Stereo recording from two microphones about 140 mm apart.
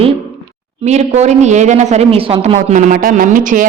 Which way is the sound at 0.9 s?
55° right (ahead or behind).